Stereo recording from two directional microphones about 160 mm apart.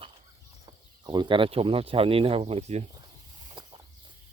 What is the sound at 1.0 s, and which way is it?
Speech, 25° right (ahead or behind).